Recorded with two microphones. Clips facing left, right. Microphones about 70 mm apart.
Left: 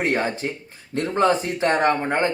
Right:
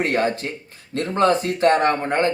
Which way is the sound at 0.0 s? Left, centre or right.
Centre.